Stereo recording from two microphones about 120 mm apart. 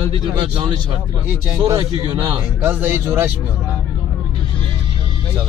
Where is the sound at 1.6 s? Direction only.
35° right (ahead or behind).